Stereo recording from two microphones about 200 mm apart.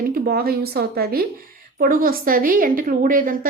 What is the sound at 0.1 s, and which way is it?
A woman's voice, 50° right (ahead or behind).